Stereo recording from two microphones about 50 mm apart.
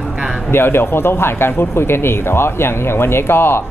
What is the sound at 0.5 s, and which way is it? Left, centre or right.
Speech, left.